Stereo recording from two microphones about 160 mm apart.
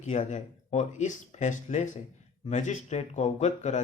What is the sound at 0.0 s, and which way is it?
Speech, 45° left (ahead or behind).